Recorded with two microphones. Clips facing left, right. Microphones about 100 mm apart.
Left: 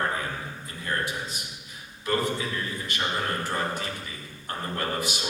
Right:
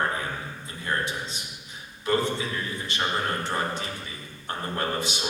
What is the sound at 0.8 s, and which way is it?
A man's voice, 25° right (ahead or behind).